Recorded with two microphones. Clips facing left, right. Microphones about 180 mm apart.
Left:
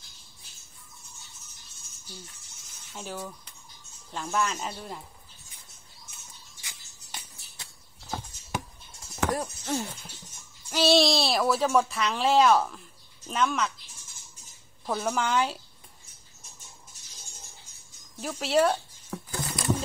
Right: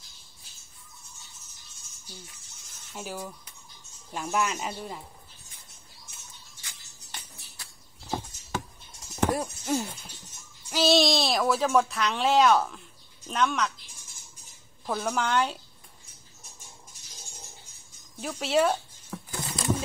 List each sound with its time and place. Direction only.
2.9 s speech: 10° right (ahead or behind)
6.6 s music: 15° left (ahead or behind)
9.3 s speech: 10° right (ahead or behind)
14.9 s speech: centre (ahead or behind)
18.2 s speech: centre (ahead or behind)
19.4 s a sound: 25° right (ahead or behind)